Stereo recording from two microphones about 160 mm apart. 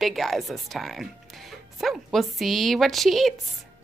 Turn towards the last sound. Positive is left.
turn(degrees=0)  # may be behind; listen again after turning